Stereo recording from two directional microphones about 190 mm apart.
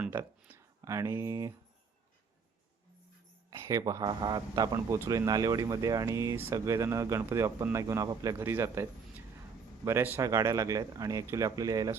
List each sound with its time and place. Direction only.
0.0 s speech: 10° right (ahead or behind)
3.5 s speech: 15° right (ahead or behind)